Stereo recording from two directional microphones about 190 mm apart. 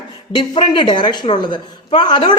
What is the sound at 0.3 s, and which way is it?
A woman's voice, 25° left (ahead or behind).